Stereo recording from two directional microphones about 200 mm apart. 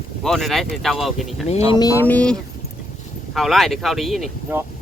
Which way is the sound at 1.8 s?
15° left (ahead or behind).